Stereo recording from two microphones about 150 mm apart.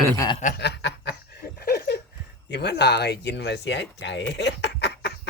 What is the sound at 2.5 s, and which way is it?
Speech, 90° left.